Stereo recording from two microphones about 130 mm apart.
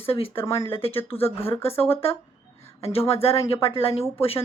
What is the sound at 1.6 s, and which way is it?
Speech, 50° left (ahead or behind).